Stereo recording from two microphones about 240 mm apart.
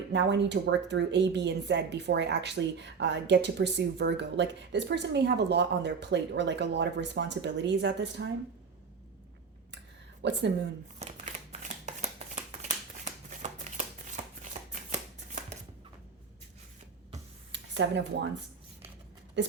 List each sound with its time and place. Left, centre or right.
0.1 s speech: right
10.2 s speech: right
11.0 s shuffling cards: right
17.5 s a sound: right
19.4 s speech: right